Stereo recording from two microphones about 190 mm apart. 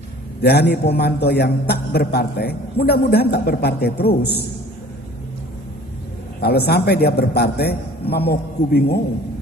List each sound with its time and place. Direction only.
0.4 s a man's voice: 60° left (ahead or behind)
6.4 s a man's voice: 55° left (ahead or behind)